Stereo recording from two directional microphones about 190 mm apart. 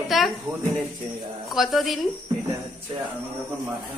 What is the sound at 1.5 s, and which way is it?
Speech, centre (ahead or behind).